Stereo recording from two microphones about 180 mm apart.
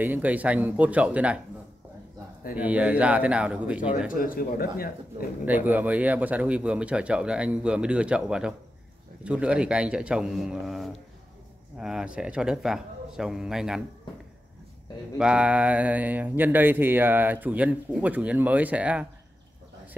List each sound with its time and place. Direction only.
0.0 s speech: 10° right (ahead or behind)
2.5 s speech: 10° right (ahead or behind)
4.1 s a man's voice: 50° left (ahead or behind)
5.4 s speech: 10° right (ahead or behind)
15.1 s speech: 5° right (ahead or behind)